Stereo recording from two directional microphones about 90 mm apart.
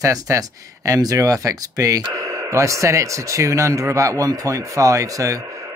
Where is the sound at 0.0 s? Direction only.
40° right (ahead or behind).